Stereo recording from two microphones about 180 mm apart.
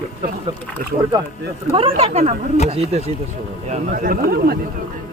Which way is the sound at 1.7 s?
30° right (ahead or behind).